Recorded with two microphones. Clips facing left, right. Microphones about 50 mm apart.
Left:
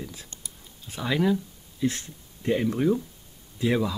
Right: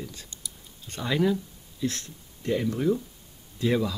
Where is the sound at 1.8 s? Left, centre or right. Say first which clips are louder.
Left 3 dB; centre.